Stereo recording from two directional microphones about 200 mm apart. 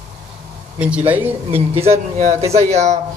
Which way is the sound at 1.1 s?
10° right (ahead or behind).